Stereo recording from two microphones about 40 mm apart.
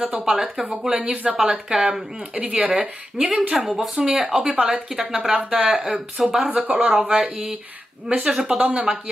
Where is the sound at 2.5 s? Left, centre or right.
Right.